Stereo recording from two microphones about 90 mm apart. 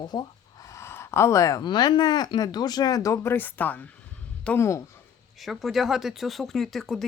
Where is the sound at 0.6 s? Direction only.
35° left (ahead or behind).